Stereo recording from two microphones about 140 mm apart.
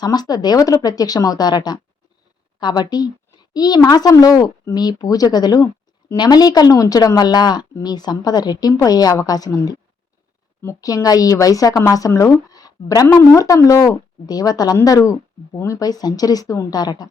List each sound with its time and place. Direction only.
0.0 s a woman's voice: 30° left (ahead or behind)